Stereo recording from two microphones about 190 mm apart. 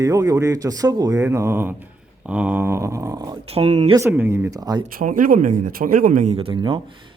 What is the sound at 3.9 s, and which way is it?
Speech, 10° right (ahead or behind).